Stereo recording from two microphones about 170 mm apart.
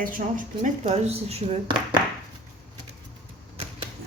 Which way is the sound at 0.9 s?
40° right (ahead or behind).